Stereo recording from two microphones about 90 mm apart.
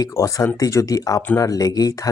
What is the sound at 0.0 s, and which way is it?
Speech, 40° left (ahead or behind).